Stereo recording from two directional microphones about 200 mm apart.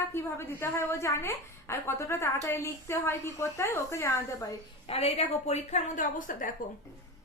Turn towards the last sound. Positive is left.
turn(degrees=40)  # may be behind; listen again after turning